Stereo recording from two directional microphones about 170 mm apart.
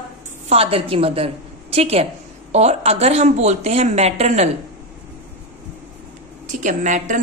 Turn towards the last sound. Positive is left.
turn(degrees=-45)  # may be behind; listen again after turning